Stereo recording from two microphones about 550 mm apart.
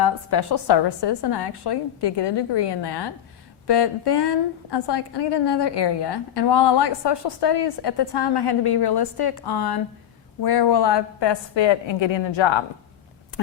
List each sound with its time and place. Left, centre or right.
0.0 s a woman's voice: left